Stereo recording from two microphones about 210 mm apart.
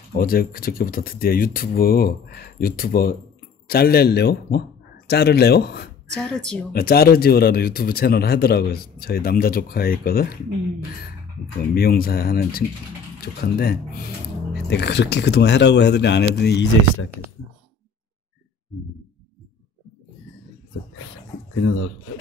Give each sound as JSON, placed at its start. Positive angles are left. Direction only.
{"t": 0.1, "sound": "speech", "side_deg": 45}
{"t": 6.2, "sound": "a woman's voice", "side_deg": 5}
{"t": 6.7, "sound": "speech", "side_deg": 45}
{"t": 11.7, "sound": "speech", "side_deg": 45}